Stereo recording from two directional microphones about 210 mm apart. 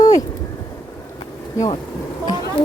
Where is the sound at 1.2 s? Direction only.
20° left (ahead or behind).